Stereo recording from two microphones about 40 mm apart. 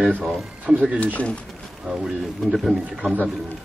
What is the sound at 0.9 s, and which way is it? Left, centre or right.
Speech, left.